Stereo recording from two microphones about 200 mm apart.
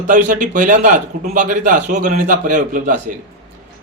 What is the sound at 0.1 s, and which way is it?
A man's voice, 40° right (ahead or behind).